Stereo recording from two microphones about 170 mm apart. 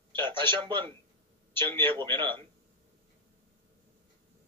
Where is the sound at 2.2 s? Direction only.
30° right (ahead or behind).